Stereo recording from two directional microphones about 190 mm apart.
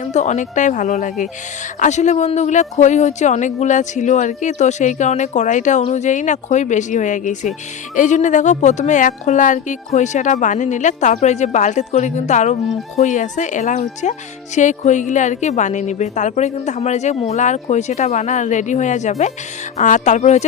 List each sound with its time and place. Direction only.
0.0 s speech: 40° left (ahead or behind)